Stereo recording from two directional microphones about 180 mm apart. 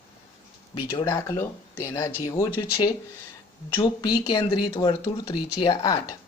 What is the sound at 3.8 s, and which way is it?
Speech, 25° left (ahead or behind).